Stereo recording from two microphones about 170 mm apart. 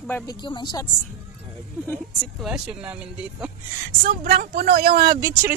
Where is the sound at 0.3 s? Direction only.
25° left (ahead or behind).